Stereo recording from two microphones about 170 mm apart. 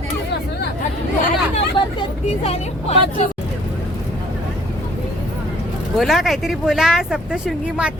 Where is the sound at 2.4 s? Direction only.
35° left (ahead or behind).